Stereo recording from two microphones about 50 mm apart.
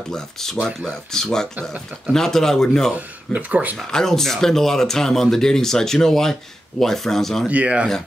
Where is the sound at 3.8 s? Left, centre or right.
Centre.